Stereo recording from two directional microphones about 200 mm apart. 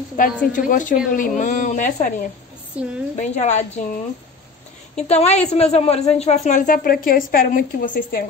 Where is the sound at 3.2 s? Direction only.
35° left (ahead or behind).